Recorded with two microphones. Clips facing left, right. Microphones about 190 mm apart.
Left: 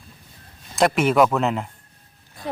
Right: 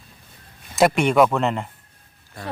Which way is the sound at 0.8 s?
Centre (ahead or behind).